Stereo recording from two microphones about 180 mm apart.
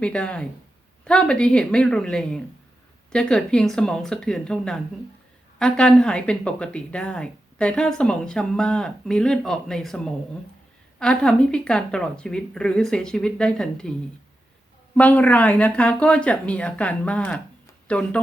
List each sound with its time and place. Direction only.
0.0 s speech: 5° left (ahead or behind)
14.9 s speech: 10° left (ahead or behind)